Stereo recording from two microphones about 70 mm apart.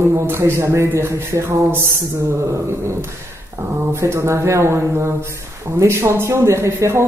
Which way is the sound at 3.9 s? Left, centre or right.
Right.